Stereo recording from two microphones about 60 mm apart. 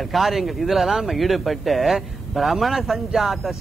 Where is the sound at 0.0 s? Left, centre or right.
Centre.